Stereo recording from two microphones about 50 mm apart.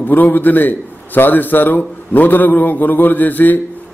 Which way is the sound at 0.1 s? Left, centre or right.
Left.